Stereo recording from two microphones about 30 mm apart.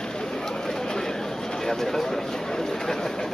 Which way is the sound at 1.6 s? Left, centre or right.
Centre.